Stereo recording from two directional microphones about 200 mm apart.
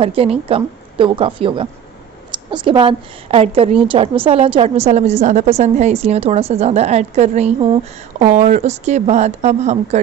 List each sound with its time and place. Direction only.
0.0 s a woman's voice: 30° right (ahead or behind)